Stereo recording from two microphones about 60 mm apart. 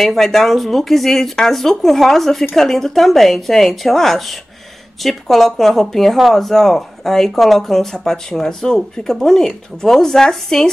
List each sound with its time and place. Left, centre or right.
0.0 s speech: centre